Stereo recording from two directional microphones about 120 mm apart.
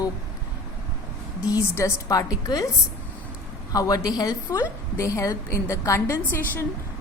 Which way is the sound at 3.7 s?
30° left (ahead or behind).